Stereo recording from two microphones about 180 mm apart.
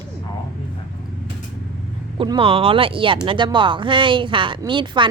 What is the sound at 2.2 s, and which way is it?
Speech, 30° right (ahead or behind).